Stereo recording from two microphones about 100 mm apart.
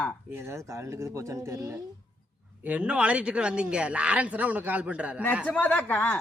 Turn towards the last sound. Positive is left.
turn(degrees=15)  # may be behind; listen again after turning